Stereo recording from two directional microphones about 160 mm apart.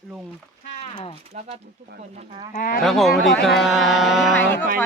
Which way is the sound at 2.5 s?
55° left (ahead or behind).